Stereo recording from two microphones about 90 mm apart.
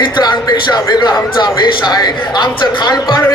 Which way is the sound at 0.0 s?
55° left (ahead or behind).